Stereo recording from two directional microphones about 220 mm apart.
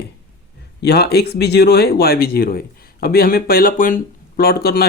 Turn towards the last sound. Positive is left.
turn(degrees=45)  # may be behind; listen again after turning